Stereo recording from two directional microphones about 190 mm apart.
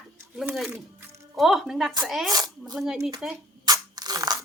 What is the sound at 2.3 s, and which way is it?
Speech, 20° right (ahead or behind).